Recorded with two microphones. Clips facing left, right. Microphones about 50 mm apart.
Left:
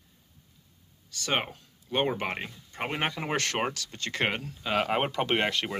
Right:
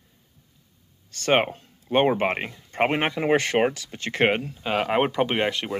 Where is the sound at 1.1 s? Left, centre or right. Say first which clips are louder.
Right 9 dB; right.